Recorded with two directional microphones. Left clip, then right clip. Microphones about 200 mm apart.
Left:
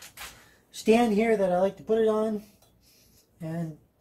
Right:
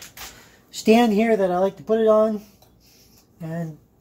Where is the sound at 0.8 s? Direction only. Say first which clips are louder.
Right 5 dB; 40° right (ahead or behind).